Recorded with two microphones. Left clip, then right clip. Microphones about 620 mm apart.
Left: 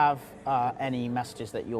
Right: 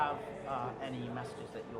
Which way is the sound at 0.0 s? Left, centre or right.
Left.